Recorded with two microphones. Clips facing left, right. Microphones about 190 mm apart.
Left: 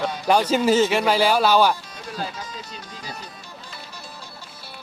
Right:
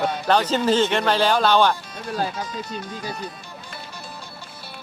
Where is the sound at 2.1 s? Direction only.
50° right (ahead or behind).